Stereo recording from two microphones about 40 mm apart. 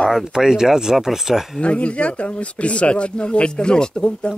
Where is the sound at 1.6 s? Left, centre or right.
Left.